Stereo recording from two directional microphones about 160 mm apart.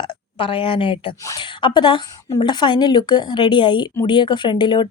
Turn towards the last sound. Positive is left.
turn(degrees=30)  # may be behind; listen again after turning